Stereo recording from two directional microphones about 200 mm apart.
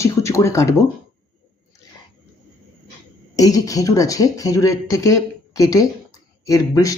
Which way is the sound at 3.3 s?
20° left (ahead or behind).